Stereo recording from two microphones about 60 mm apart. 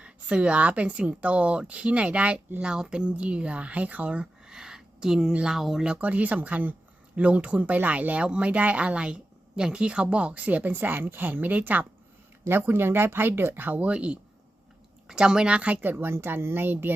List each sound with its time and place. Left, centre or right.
0.0 s speech: centre
4.4 s a sound: centre
5.3 s speech: centre
5.5 s speech: centre
5.8 s speech: right